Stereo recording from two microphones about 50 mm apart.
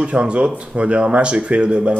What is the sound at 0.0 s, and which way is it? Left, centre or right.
Speech, right.